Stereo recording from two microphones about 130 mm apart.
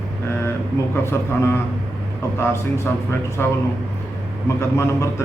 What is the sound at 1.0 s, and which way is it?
Speech, 20° left (ahead or behind).